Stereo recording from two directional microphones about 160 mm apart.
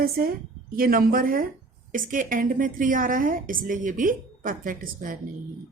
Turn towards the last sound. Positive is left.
turn(degrees=-60)  # may be behind; listen again after turning